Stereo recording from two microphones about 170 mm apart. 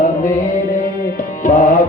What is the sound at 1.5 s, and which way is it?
Tabla, 50° left (ahead or behind).